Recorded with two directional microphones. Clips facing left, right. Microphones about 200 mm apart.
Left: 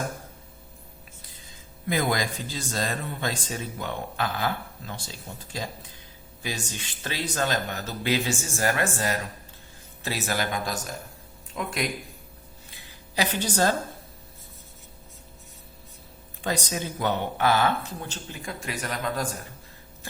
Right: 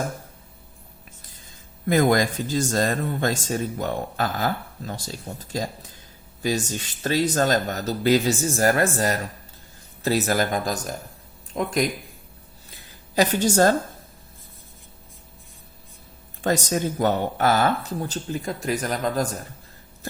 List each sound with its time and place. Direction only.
1.9 s speech: 50° right (ahead or behind)
13.1 s speech: 45° right (ahead or behind)
16.4 s speech: 45° right (ahead or behind)